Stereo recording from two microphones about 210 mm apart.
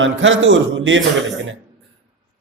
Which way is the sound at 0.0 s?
65° right (ahead or behind).